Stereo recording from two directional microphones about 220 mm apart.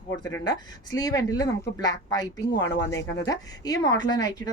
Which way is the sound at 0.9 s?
15° left (ahead or behind).